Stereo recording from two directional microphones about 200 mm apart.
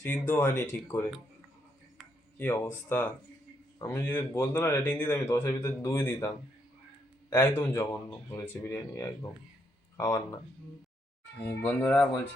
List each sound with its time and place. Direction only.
0.0 s speech: 10° left (ahead or behind)
2.4 s speech: 10° left (ahead or behind)